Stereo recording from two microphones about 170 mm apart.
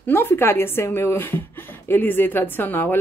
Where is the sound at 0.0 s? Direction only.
15° left (ahead or behind).